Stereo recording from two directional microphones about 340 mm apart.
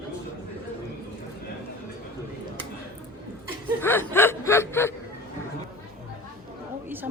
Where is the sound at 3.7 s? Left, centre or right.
Centre.